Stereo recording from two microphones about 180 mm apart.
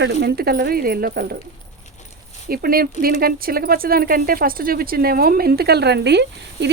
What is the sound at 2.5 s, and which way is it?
Speech, 55° right (ahead or behind).